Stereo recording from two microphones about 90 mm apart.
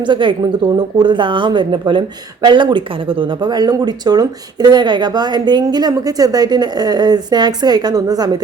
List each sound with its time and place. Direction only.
0.0 s a woman's voice: 65° right (ahead or behind); by 8.4 s 45° right (ahead or behind)